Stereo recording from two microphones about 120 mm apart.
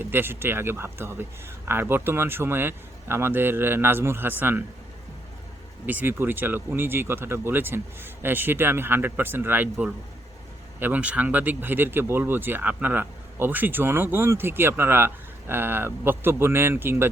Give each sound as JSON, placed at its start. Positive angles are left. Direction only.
{"t": 0.0, "sound": "speech", "side_deg": -20}
{"t": 5.8, "sound": "speech", "side_deg": -15}